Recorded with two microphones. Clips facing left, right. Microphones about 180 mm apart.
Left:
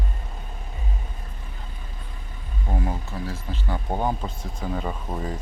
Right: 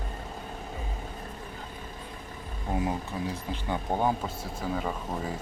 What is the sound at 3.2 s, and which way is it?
Speech, 20° right (ahead or behind).